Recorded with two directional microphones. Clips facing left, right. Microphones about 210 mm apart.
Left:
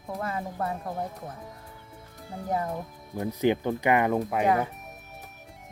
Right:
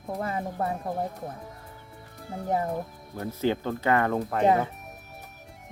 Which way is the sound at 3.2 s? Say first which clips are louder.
Left 2 dB; 15° left (ahead or behind).